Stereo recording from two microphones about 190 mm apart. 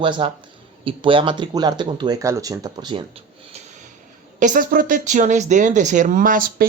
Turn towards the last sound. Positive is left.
turn(degrees=-45)  # may be behind; listen again after turning